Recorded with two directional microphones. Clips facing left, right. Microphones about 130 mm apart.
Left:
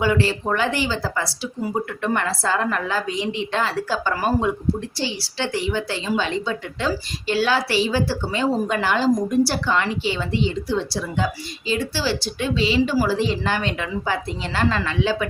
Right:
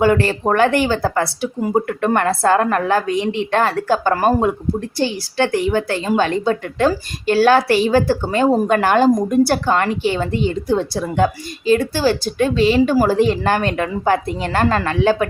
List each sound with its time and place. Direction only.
0.0 s a woman's voice: 50° right (ahead or behind)